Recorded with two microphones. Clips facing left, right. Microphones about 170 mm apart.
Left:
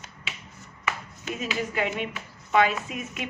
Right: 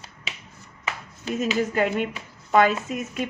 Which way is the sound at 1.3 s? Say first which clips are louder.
Right 6 dB; 45° right (ahead or behind).